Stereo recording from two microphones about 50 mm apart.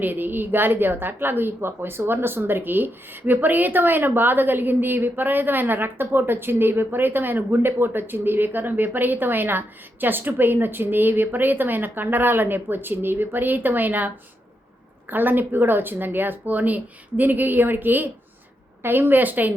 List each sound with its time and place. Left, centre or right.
0.0 s a woman's voice: right
15.1 s speech: right